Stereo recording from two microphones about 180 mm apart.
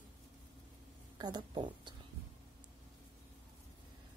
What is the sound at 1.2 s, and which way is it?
Speech, 25° right (ahead or behind).